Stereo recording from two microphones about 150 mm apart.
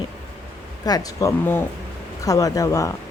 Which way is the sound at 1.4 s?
15° left (ahead or behind).